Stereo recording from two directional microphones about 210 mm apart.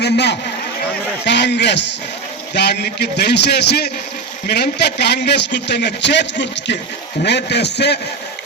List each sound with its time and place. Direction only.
0.0 s a man's voice: 55° left (ahead or behind)